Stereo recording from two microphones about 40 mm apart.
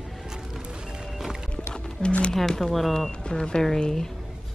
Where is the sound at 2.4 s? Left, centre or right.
Centre.